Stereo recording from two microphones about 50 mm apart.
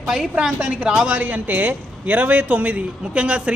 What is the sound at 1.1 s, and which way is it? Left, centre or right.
A man's voice, right.